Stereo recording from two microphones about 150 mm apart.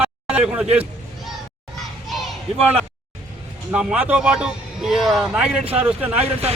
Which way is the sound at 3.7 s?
5° right (ahead or behind).